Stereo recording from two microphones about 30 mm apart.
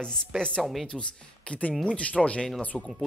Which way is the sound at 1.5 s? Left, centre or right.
Left.